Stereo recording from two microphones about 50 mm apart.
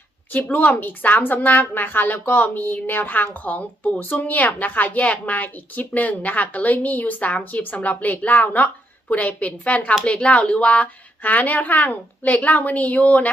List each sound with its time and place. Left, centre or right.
0.3 s a woman's voice: left